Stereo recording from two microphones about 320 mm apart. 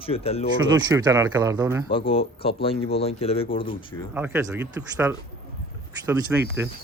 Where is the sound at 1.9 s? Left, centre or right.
Centre.